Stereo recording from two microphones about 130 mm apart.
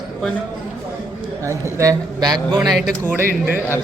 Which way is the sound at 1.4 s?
25° right (ahead or behind).